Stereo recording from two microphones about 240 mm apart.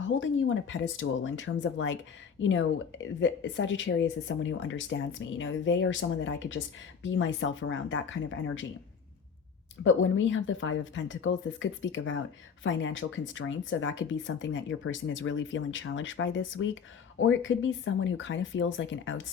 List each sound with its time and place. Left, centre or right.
0.0 s speech: left
9.8 s speech: left